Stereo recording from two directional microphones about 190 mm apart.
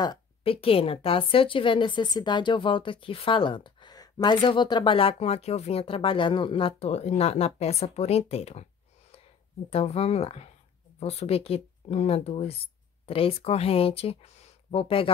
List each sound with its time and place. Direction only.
0.0 s a woman's voice: 25° left (ahead or behind)
9.7 s speech: 30° left (ahead or behind)